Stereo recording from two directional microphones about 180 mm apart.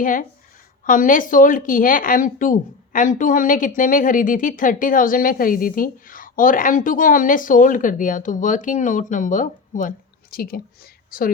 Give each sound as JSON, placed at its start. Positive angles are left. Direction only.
{"t": 0.0, "sound": "speech", "side_deg": 50}